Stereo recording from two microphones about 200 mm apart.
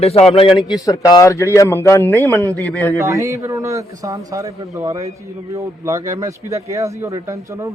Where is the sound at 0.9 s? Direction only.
15° left (ahead or behind).